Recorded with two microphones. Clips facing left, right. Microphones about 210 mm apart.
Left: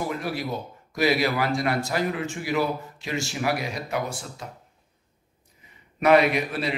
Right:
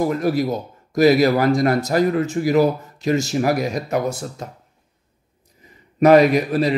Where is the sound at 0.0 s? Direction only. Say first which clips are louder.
Right 10 dB; 40° right (ahead or behind).